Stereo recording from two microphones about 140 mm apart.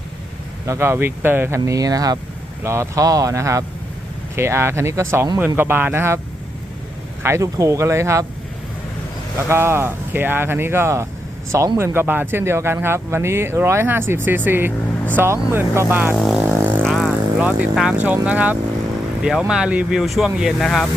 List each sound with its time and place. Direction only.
0.7 s speech: 15° right (ahead or behind)
7.2 s speech: 20° right (ahead or behind)
9.5 s speech: 15° right (ahead or behind)
16.1 s speech: centre (ahead or behind)
16.5 s vehicle: 15° right (ahead or behind)
16.8 s speech: centre (ahead or behind)